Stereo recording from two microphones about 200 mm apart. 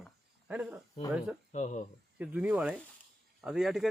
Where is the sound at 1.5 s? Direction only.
35° left (ahead or behind).